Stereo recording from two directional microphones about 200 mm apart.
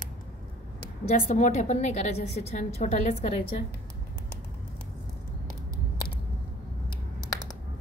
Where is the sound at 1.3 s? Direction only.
35° left (ahead or behind).